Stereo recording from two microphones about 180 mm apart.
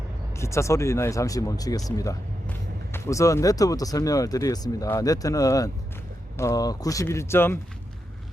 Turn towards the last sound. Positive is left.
turn(degrees=15)  # may be behind; listen again after turning